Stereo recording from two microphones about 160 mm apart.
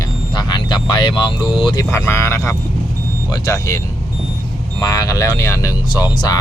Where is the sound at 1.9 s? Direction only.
15° left (ahead or behind).